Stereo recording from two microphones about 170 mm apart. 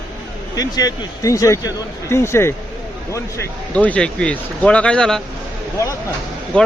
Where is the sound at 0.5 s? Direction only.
20° left (ahead or behind); by 5.2 s 5° left (ahead or behind).